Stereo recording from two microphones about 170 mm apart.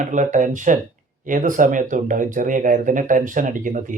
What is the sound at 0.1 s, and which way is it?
Speech, 45° right (ahead or behind).